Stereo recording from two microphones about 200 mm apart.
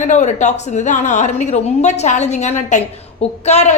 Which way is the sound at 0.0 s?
35° left (ahead or behind).